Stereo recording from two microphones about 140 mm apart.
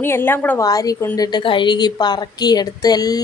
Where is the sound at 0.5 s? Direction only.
25° left (ahead or behind).